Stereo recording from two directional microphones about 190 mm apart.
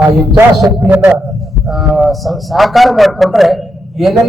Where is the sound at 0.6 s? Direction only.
10° right (ahead or behind).